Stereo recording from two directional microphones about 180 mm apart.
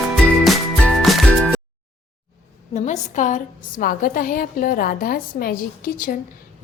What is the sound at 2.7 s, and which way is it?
A woman's voice, 40° left (ahead or behind).